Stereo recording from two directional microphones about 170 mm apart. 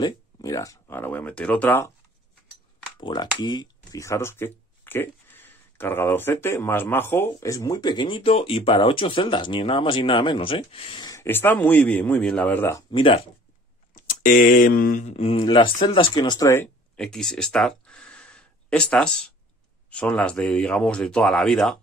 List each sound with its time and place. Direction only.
0.0 s speech: 20° left (ahead or behind)
3.0 s speech: 25° left (ahead or behind)
12.9 s speech: 30° left (ahead or behind)
13.9 s speech: 55° left (ahead or behind); by 16.6 s 20° left (ahead or behind)
16.9 s a sound: 5° left (ahead or behind)
19.9 s speech: 5° left (ahead or behind)